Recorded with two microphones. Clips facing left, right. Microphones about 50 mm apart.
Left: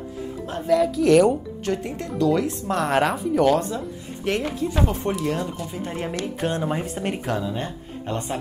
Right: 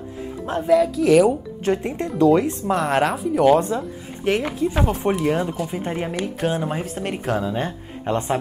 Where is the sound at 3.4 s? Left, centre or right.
Right.